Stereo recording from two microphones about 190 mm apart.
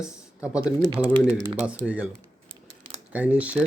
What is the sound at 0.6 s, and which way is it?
Speech, 15° left (ahead or behind).